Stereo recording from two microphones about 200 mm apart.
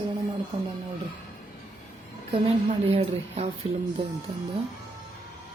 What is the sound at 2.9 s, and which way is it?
Speech, 30° right (ahead or behind).